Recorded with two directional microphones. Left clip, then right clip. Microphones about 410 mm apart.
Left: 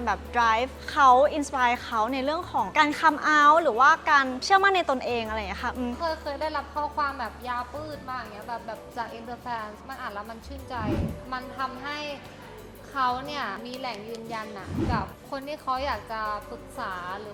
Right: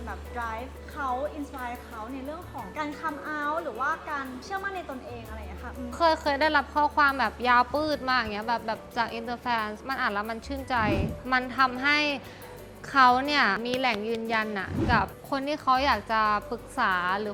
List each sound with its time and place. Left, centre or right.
0.0 s a woman's voice: left
6.0 s speech: right
7.5 s speech: right
8.4 s a woman's voice: right
9.0 s a woman's voice: right